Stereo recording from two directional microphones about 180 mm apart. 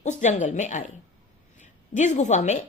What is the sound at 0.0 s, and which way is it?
A woman's voice, 40° left (ahead or behind).